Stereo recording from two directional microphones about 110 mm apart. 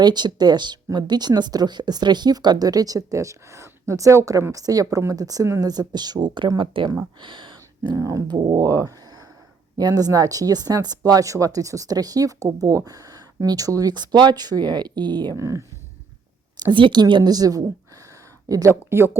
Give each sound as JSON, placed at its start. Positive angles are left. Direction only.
{"t": 0.0, "sound": "speech", "side_deg": -40}
{"t": 7.9, "sound": "speech", "side_deg": -30}
{"t": 15.4, "sound": "speech", "side_deg": -30}
{"t": 16.6, "sound": "speech", "side_deg": -45}